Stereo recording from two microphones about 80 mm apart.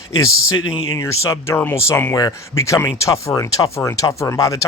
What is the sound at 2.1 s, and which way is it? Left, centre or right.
Speech, left.